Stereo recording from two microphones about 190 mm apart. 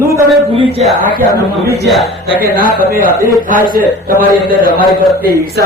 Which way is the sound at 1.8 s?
Centre (ahead or behind).